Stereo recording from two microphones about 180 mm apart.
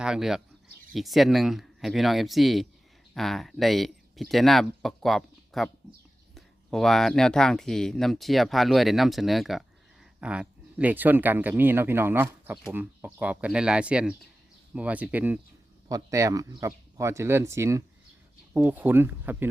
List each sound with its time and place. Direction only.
0.0 s speech: 5° right (ahead or behind)
15.9 s speech: 20° right (ahead or behind)